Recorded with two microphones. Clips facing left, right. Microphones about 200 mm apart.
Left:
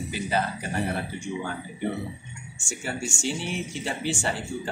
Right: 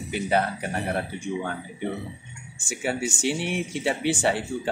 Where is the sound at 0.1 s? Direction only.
65° right (ahead or behind).